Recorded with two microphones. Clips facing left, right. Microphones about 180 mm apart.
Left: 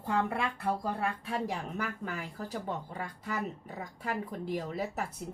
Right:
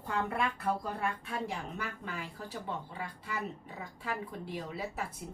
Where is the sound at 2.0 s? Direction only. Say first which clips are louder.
Left 3 dB; 45° left (ahead or behind).